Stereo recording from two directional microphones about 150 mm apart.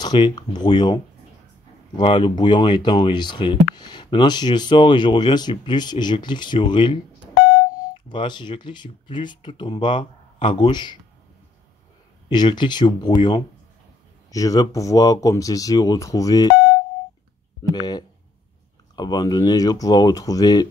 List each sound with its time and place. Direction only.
0.0 s speech: 30° left (ahead or behind)
8.1 s speech: 30° left (ahead or behind)
12.3 s speech: 30° left (ahead or behind)
17.7 s speech: 25° left (ahead or behind)